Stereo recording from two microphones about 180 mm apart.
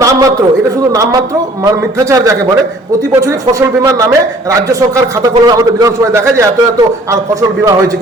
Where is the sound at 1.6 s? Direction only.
20° right (ahead or behind).